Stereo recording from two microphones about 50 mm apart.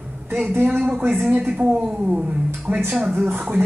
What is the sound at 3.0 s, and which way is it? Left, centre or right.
Speech, right.